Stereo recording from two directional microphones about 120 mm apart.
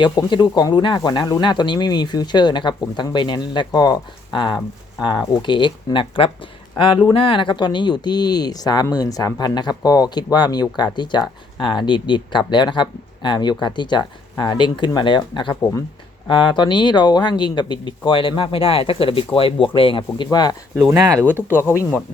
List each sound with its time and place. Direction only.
0.0 s speech: 35° left (ahead or behind)
21.2 s speech: 20° right (ahead or behind)
21.5 s speech: 20° left (ahead or behind)